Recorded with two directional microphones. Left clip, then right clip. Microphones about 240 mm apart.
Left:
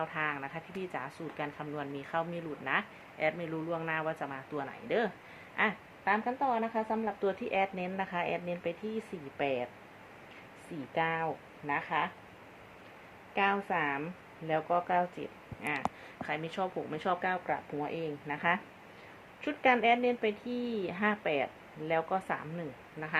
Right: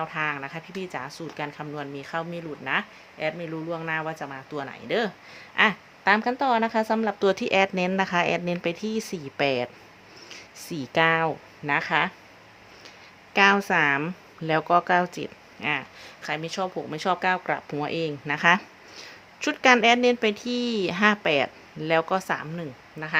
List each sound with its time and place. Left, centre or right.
0.0 s speech: centre
6.1 s speech: right
10.9 s speech: right
13.3 s speech: right
16.2 s speech: centre